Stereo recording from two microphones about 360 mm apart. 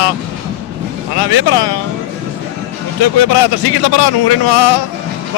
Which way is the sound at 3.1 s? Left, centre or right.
Left.